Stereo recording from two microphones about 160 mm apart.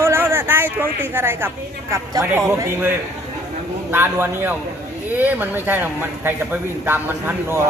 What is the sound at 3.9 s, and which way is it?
Speech, 15° right (ahead or behind).